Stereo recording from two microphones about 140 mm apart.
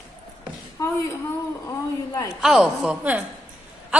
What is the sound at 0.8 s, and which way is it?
A woman's voice, 25° left (ahead or behind).